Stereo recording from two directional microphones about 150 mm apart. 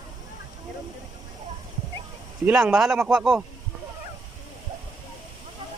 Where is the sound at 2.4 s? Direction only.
5° right (ahead or behind).